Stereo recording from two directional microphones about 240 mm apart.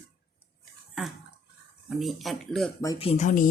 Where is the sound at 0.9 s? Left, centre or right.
Centre.